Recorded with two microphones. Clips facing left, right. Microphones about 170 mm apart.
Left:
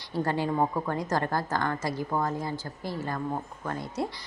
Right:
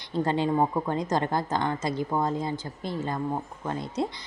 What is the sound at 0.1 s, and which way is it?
A woman's voice, 20° right (ahead or behind).